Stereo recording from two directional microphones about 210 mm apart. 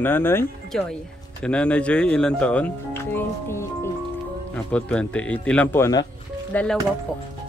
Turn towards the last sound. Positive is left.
turn(degrees=5)  # may be behind; listen again after turning